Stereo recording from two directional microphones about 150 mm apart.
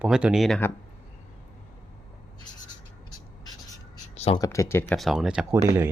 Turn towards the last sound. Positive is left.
turn(degrees=-15)  # may be behind; listen again after turning